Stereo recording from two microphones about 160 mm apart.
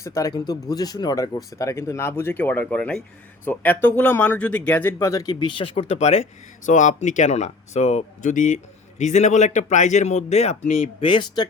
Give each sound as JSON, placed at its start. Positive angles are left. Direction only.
{"t": 0.0, "sound": "speech", "side_deg": 20}